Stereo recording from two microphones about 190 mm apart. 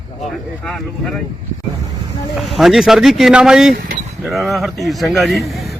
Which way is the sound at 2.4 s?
Centre (ahead or behind).